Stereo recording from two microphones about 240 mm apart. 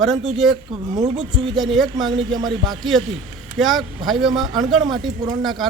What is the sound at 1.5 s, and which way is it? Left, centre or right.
Speech, centre.